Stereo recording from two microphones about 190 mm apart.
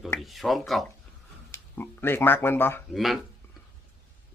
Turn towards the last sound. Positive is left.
turn(degrees=0)  # may be behind; listen again after turning